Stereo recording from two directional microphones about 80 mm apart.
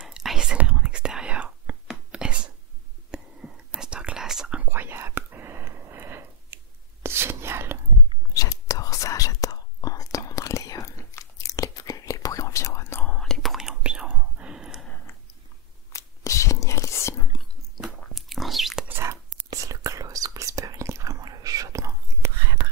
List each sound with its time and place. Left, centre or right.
0.0 s whispering: centre
4.6 s whispering: right
8.3 s whispering: left
13.0 s whispering: centre
15.9 s whispering: left
18.1 s a sound: centre
18.9 s whispering: right
19.5 s whispering: right